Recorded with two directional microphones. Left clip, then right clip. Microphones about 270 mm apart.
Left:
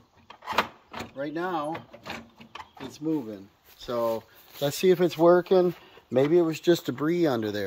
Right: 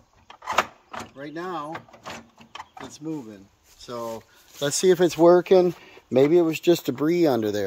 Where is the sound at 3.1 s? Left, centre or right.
Centre.